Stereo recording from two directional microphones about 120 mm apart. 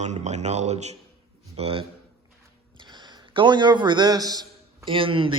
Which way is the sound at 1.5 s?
55° right (ahead or behind).